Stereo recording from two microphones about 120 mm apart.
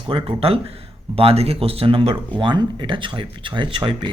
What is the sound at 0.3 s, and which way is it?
Speech, 55° right (ahead or behind).